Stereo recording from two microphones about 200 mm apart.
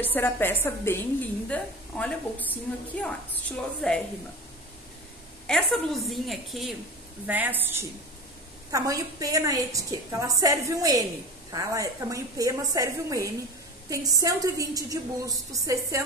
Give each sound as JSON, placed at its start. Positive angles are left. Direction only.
{"t": 0.0, "sound": "a woman's voice", "side_deg": 10}
{"t": 5.5, "sound": "a woman's voice", "side_deg": 0}